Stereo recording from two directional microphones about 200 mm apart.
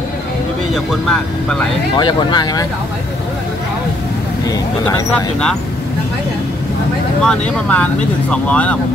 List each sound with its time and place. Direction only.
0.7 s speech: centre (ahead or behind)
2.0 s speech: 20° left (ahead or behind)
4.5 s speech: 15° left (ahead or behind)
7.2 s speech: 5° left (ahead or behind)